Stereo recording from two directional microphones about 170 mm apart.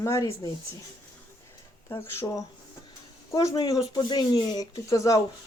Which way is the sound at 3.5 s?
25° left (ahead or behind).